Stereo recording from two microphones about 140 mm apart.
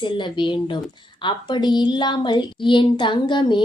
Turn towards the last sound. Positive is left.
turn(degrees=35)  # may be behind; listen again after turning